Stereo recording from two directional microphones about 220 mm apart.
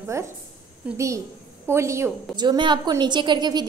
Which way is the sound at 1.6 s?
10° right (ahead or behind).